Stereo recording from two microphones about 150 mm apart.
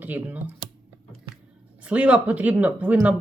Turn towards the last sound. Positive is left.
turn(degrees=-10)  # may be behind; listen again after turning